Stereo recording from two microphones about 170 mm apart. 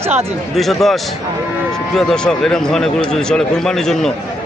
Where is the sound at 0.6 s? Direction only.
Centre (ahead or behind).